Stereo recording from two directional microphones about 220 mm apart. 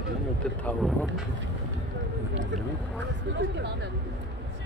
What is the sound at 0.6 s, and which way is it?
Speech, 5° left (ahead or behind).